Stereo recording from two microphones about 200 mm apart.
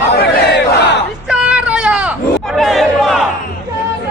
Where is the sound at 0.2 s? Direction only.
60° left (ahead or behind).